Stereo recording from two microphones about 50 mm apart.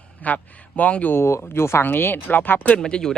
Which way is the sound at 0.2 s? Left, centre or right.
Left.